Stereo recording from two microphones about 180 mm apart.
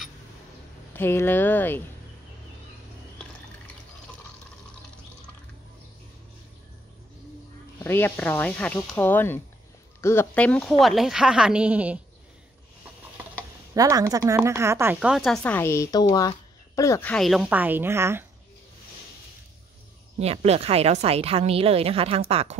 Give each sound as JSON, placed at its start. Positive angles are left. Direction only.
{"t": 0.9, "sound": "speech", "side_deg": 10}
{"t": 7.8, "sound": "speech", "side_deg": 10}
{"t": 13.7, "sound": "speech", "side_deg": -20}
{"t": 17.1, "sound": "a woman's voice", "side_deg": 0}
{"t": 20.2, "sound": "a woman's voice", "side_deg": -35}